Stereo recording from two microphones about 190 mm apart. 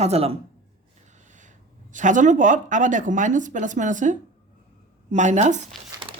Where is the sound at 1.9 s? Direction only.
40° right (ahead or behind).